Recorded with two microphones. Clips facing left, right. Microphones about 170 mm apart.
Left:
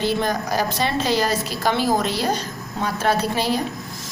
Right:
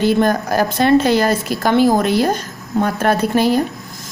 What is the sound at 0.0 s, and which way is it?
A woman's voice, 50° right (ahead or behind).